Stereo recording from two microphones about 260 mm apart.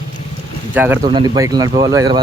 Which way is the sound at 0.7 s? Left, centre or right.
Centre.